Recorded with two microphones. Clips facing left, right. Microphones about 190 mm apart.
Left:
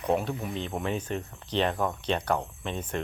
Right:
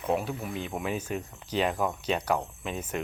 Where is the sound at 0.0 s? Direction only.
Centre (ahead or behind).